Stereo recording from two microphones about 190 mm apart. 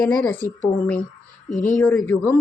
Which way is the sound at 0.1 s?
10° left (ahead or behind).